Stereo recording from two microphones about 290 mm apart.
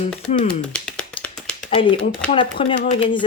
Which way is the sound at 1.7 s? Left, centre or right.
Centre.